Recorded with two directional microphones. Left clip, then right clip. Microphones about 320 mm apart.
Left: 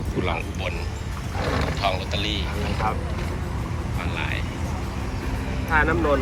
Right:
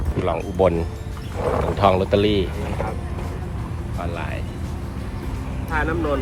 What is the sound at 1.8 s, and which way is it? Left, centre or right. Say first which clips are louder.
Speech: right 12 dB; right.